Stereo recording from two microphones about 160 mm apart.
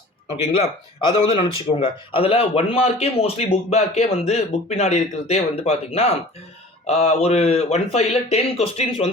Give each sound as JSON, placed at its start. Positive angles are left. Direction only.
{"t": 0.6, "sound": "a man's voice", "side_deg": 35}